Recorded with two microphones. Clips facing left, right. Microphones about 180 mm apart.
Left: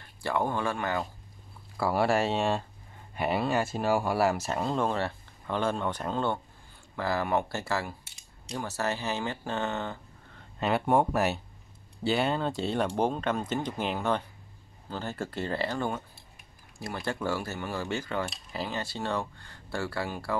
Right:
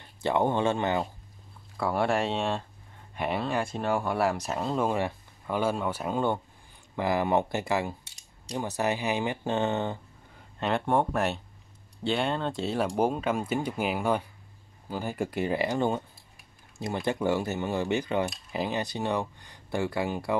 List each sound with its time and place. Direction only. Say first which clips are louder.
0.2 s speech: right 4 dB; 20° right (ahead or behind)
1.8 s speech: left 1 dB; 5° left (ahead or behind); by 9.9 s 20° right (ahead or behind)
10.6 s speech: left 1 dB; 5° left (ahead or behind); by 20.3 s 20° right (ahead or behind)